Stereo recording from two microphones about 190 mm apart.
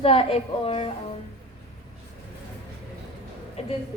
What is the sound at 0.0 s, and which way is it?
Speech, 30° left (ahead or behind).